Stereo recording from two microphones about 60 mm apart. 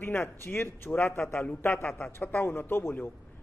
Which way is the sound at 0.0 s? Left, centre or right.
Left.